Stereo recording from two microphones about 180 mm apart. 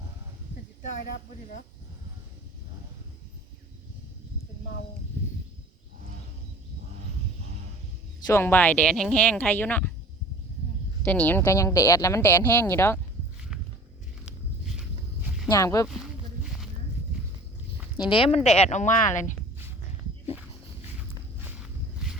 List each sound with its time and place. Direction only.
8.3 s speech: 10° left (ahead or behind)
11.0 s speech: 10° left (ahead or behind)
14.8 s walk: 5° right (ahead or behind)
15.4 s speech: 20° left (ahead or behind)
15.9 s a sound: centre (ahead or behind)
17.9 s speech: 30° left (ahead or behind)
21.4 s walk: 5° right (ahead or behind)